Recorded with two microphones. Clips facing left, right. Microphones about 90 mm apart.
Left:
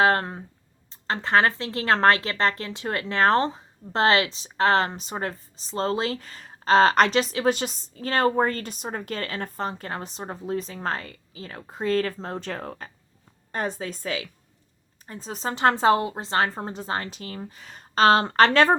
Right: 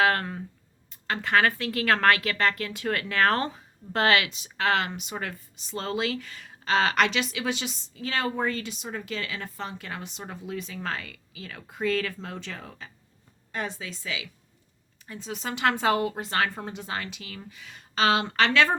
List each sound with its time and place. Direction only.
0.0 s a woman's voice: 30° left (ahead or behind)